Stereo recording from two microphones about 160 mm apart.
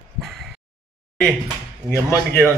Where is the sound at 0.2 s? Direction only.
Centre (ahead or behind).